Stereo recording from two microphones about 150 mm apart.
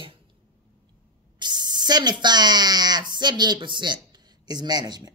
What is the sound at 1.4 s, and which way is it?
Speech, 30° right (ahead or behind).